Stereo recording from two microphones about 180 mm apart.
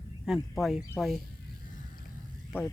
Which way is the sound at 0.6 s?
Centre (ahead or behind).